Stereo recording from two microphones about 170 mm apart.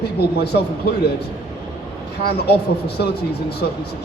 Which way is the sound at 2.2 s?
70° left (ahead or behind).